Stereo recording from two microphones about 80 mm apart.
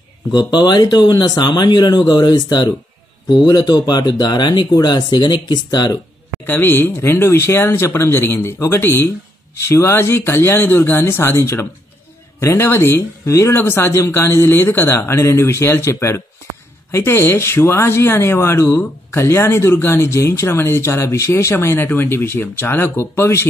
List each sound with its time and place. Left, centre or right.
0.3 s speech: left
6.4 s speech: left